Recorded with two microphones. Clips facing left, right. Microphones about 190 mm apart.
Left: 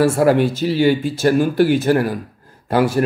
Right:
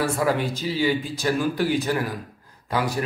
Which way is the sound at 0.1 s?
60° left (ahead or behind).